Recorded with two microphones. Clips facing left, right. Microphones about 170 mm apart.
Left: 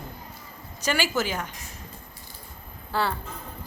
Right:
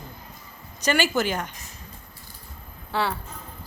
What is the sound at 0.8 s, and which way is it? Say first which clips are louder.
Speech: right 3 dB; 5° left (ahead or behind).